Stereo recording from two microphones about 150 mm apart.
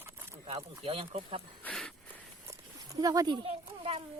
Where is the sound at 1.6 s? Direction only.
5° left (ahead or behind).